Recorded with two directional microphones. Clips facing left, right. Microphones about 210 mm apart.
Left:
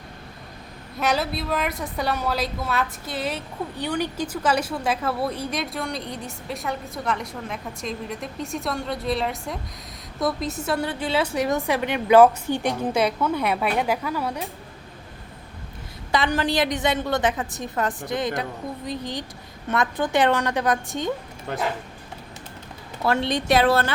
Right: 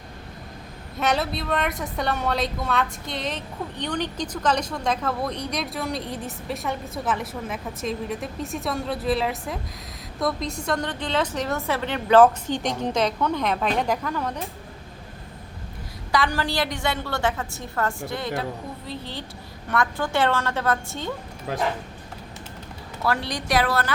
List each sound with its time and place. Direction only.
0.9 s a woman's voice: centre (ahead or behind)
16.1 s a woman's voice: 20° left (ahead or behind)
21.5 s speech: 5° right (ahead or behind)
23.0 s a woman's voice: 25° left (ahead or behind)